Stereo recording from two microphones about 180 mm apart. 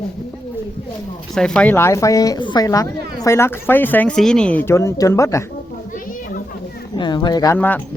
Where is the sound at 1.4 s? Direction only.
5° left (ahead or behind).